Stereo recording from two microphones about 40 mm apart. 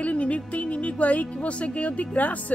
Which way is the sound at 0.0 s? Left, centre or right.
Left.